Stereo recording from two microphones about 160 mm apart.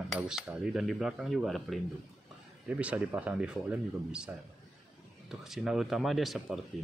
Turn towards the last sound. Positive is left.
turn(degrees=0)  # may be behind; listen again after turning